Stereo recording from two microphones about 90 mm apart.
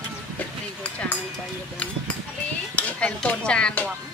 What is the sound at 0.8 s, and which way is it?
Dishes, 15° left (ahead or behind).